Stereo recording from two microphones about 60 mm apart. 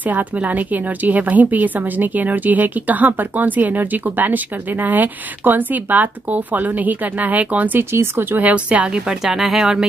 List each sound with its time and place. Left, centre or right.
0.0 s a woman's voice: right
7.9 s speech: right; by 9.8 s centre